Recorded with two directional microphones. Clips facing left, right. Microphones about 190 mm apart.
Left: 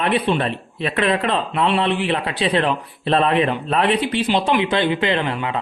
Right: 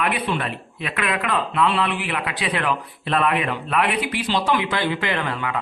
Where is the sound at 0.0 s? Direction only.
30° left (ahead or behind).